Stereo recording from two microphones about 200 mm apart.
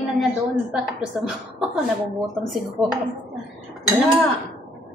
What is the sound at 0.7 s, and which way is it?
A woman's voice, 5° right (ahead or behind).